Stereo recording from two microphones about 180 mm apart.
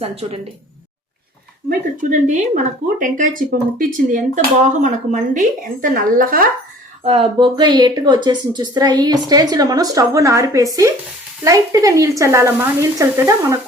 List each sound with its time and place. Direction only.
0.0 s speech: 35° right (ahead or behind)
2.0 s speech: 45° right (ahead or behind)
7.0 s speech: 30° right (ahead or behind); by 13.6 s 15° right (ahead or behind)